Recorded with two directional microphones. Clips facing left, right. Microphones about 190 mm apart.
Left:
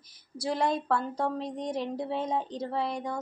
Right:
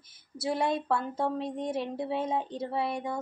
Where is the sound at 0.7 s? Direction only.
5° right (ahead or behind).